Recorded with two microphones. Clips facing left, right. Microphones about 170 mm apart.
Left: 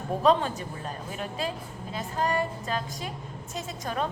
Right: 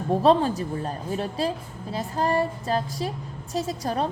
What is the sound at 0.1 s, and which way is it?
Speech, 35° right (ahead or behind).